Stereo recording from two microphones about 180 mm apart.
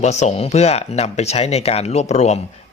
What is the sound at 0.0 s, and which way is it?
Speech, 40° left (ahead or behind).